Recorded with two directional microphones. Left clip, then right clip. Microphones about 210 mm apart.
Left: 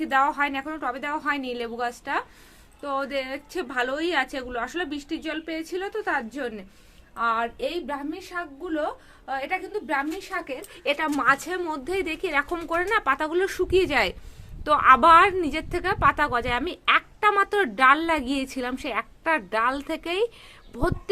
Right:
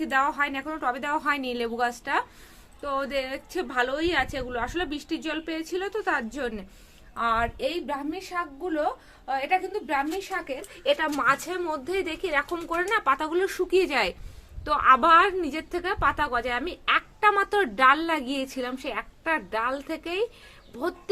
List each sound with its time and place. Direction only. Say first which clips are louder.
0.0 s a woman's voice: left 2 dB; 10° left (ahead or behind)